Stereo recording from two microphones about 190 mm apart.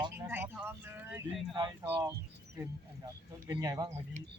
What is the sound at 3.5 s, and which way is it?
Speech, 20° right (ahead or behind).